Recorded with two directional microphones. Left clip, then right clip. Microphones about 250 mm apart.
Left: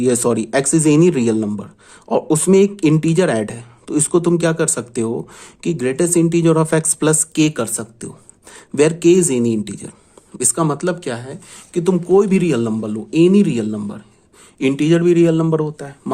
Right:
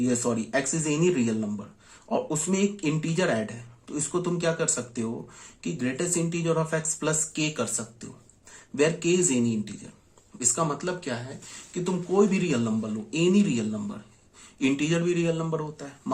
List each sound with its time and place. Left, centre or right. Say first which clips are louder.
0.0 s speech: left 11 dB; left